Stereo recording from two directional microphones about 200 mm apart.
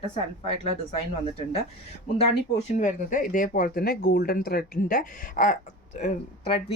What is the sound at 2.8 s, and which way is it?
Speech, 40° left (ahead or behind).